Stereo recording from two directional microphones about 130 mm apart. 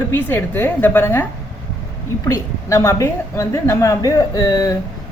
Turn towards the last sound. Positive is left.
turn(degrees=25)  # may be behind; listen again after turning